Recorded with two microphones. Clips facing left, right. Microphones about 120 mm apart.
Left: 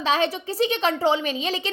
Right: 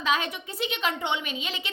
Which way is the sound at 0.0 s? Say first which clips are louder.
Left 5 dB; 30° left (ahead or behind).